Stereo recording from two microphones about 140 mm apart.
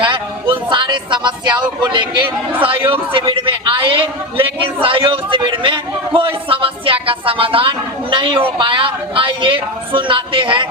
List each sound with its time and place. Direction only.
0.7 s a man's voice: 35° right (ahead or behind)